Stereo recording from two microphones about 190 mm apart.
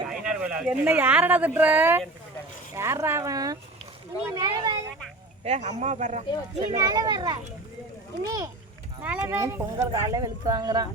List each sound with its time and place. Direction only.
0.1 s speech: 5° right (ahead or behind); by 4.8 s 25° right (ahead or behind)
5.5 s speech: 35° right (ahead or behind)
6.7 s a child's voice: 20° right (ahead or behind)
9.0 s speech: 10° right (ahead or behind)